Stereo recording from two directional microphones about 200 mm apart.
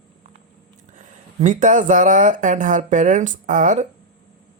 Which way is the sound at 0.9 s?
35° right (ahead or behind).